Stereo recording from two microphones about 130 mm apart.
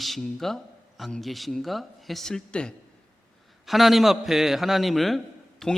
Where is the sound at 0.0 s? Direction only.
Centre (ahead or behind).